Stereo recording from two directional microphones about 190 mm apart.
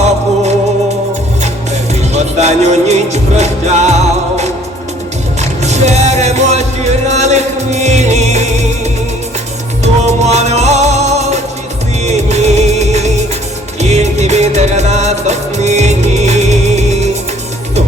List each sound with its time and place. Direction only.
2.1 s music: 35° right (ahead or behind)
9.8 s music: 35° right (ahead or behind)
12.0 s music of bollywood: 35° right (ahead or behind)
13.9 s music: 35° right (ahead or behind)